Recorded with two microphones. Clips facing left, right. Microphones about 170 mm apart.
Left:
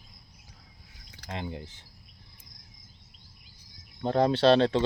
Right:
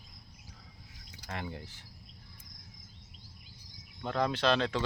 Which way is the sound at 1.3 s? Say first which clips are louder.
Left 4 dB; 20° left (ahead or behind).